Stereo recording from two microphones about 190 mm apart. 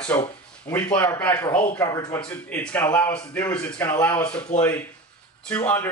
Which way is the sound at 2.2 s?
5° left (ahead or behind).